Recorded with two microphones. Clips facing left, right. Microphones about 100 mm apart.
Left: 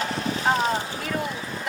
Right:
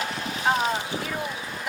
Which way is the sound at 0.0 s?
35° left (ahead or behind).